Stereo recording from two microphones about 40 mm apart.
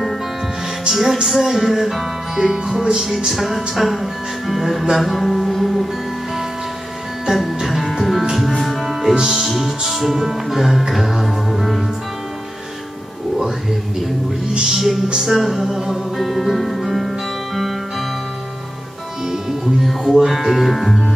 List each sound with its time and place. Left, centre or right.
0.8 s music: centre
2.3 s music: centre
3.3 s music: centre
7.3 s music: centre
14.7 s music: centre
19.3 s music: centre